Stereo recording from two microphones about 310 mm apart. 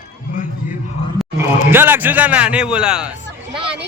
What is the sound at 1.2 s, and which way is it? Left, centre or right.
A man's voice, centre.